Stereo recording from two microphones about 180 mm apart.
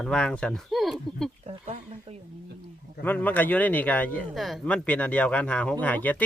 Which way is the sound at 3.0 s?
10° left (ahead or behind).